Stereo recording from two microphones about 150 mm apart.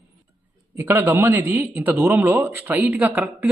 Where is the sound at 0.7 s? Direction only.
15° right (ahead or behind).